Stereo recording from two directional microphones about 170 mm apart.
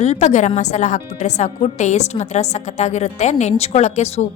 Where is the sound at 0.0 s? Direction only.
40° left (ahead or behind).